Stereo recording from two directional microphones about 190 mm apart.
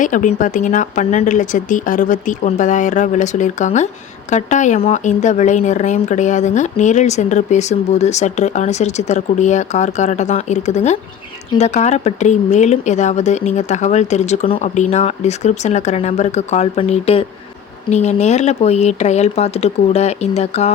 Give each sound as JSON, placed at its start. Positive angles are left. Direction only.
{"t": 0.0, "sound": "speech", "side_deg": 40}